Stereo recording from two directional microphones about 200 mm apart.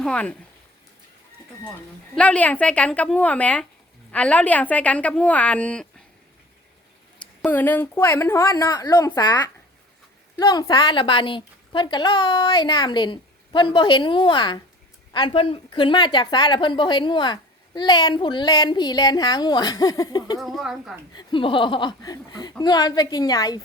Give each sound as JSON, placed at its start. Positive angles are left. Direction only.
{"t": 0.0, "sound": "a woman's voice", "side_deg": 5}
{"t": 2.1, "sound": "a woman's voice", "side_deg": 5}
{"t": 7.2, "sound": "a woman's voice", "side_deg": 5}
{"t": 20.4, "sound": "a woman's voice", "side_deg": 0}
{"t": 21.2, "sound": "a woman's voice", "side_deg": 25}